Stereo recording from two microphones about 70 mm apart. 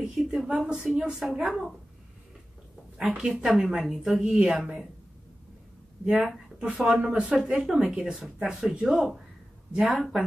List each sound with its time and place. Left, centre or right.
0.0 s a woman's voice: centre
3.0 s a woman's voice: centre
6.2 s a woman's voice: centre